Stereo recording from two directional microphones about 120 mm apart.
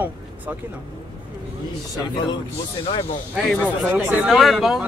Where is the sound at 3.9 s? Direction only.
15° right (ahead or behind).